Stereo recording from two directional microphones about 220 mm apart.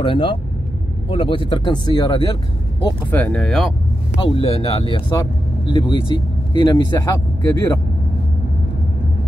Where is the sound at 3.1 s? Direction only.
5° left (ahead or behind).